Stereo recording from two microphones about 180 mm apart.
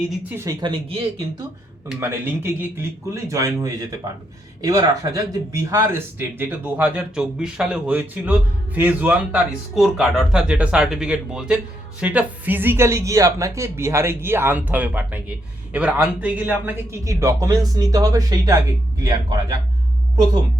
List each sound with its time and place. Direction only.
0.3 s a man's voice: 15° right (ahead or behind)
0.6 s speech: 30° right (ahead or behind)
2.0 s a man's voice: 15° right (ahead or behind)